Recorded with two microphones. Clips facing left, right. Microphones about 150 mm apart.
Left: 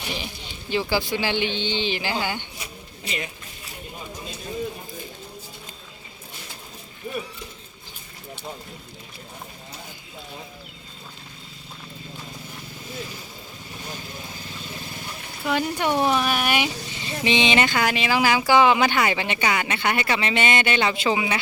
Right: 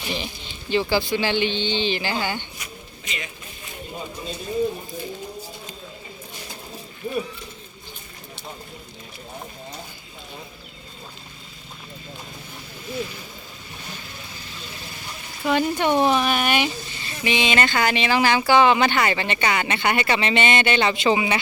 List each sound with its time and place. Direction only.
0.1 s speech: 10° left (ahead or behind)
2.6 s a sound: 30° left (ahead or behind)
15.4 s speech: centre (ahead or behind)
17.7 s speech: 5° left (ahead or behind)